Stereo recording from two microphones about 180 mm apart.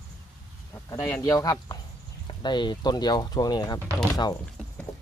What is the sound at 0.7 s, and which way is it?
Speech, 15° left (ahead or behind).